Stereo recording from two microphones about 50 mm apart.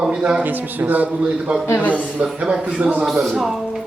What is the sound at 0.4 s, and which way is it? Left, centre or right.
Speech, right.